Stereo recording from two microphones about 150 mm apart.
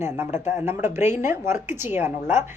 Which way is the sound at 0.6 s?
15° right (ahead or behind).